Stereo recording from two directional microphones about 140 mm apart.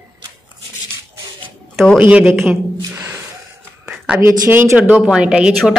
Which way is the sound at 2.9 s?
15° right (ahead or behind).